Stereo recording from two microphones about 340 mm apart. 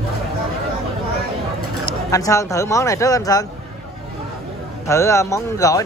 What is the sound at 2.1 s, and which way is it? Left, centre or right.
Speech, centre.